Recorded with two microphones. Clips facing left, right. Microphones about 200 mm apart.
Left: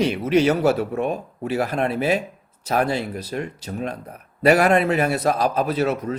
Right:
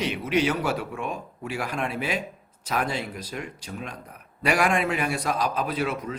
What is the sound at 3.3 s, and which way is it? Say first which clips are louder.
Speech: left 8 dB; 40° left (ahead or behind).